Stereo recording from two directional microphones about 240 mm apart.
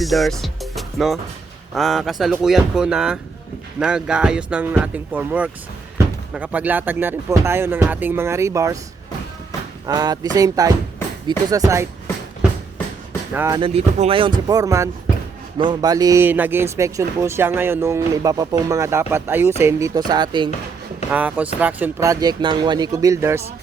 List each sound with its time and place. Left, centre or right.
0.0 s speech: centre
9.8 s speech: centre
13.3 s speech: centre
13.6 s speech: right
21.1 s speech: centre